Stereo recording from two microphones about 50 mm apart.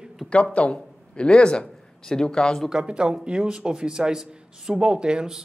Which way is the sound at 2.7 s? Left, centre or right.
Centre.